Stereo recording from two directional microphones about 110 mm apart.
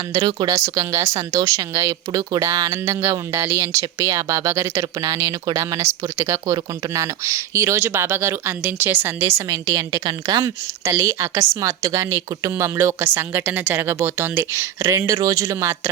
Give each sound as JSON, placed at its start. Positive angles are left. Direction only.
{"t": 0.1, "sound": "speech", "side_deg": -35}